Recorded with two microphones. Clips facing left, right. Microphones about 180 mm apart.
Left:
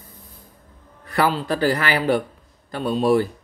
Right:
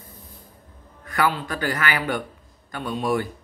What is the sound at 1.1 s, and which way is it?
A man's voice, 35° left (ahead or behind).